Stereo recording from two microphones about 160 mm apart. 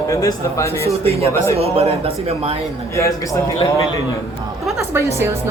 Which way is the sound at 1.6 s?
40° right (ahead or behind).